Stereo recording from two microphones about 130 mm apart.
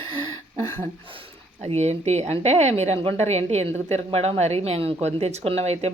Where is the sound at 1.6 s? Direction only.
55° right (ahead or behind).